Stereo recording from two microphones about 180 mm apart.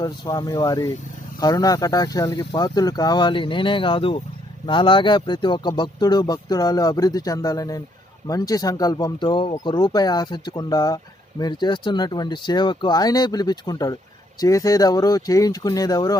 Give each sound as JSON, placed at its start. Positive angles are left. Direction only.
{"t": 0.0, "sound": "speech", "side_deg": 20}